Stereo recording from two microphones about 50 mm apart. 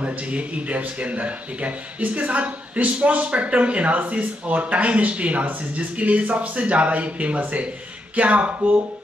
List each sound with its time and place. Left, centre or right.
0.0 s speech: right